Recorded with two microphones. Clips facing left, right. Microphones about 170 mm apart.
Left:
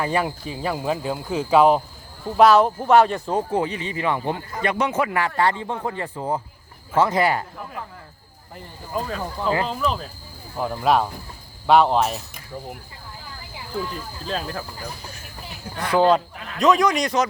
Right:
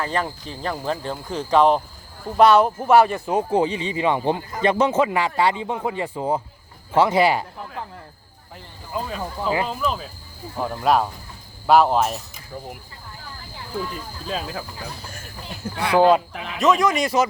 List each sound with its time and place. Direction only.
0.0 s speech: 10° left (ahead or behind); by 7.4 s 10° right (ahead or behind)
8.9 s speech: 5° right (ahead or behind)
14.3 s speech: 5° right (ahead or behind)
15.8 s speech: 10° right (ahead or behind)
16.3 s speech: 90° right
16.6 s speech: centre (ahead or behind)